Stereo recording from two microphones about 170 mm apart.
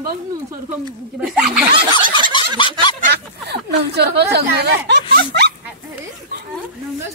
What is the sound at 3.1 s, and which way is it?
Speech, 75° right (ahead or behind).